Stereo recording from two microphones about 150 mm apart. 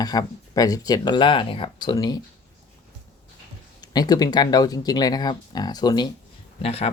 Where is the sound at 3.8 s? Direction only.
25° left (ahead or behind).